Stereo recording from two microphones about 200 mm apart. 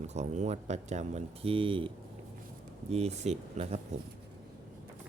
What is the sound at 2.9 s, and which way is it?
Speech, 30° right (ahead or behind).